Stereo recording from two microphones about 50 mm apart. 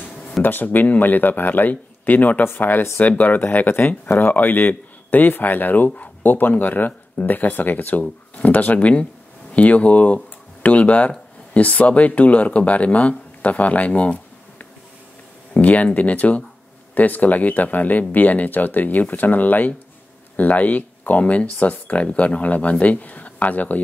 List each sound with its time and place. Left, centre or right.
0.4 s speech: left